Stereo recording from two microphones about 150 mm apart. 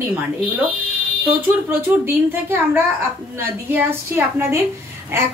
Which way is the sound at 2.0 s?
15° right (ahead or behind).